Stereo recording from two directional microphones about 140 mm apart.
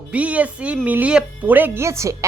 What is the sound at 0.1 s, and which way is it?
A woman's voice, 10° right (ahead or behind).